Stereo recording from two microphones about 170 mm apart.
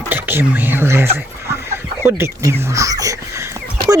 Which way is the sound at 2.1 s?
15° right (ahead or behind).